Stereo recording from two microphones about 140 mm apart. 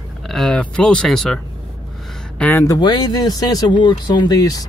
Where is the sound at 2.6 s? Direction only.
30° left (ahead or behind).